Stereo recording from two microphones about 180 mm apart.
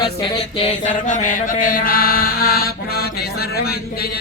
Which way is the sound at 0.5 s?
40° left (ahead or behind).